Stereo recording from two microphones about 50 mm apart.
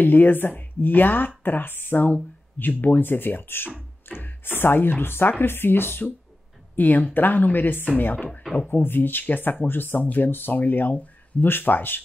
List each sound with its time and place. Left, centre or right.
0.0 s speech: left
6.8 s speech: left